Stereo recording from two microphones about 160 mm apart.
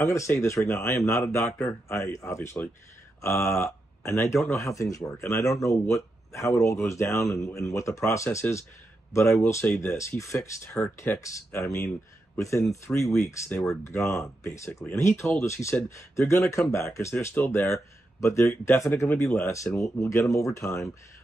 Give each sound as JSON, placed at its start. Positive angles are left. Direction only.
{"t": 0.0, "sound": "speech", "side_deg": 15}
{"t": 12.9, "sound": "speech", "side_deg": 0}
{"t": 13.2, "sound": "speech", "side_deg": 15}